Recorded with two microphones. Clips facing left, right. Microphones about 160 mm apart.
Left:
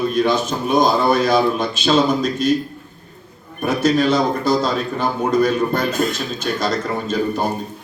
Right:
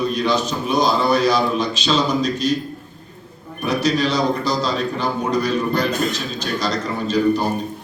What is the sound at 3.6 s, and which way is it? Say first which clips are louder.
A man's voice: left 3 dB; 50° left (ahead or behind).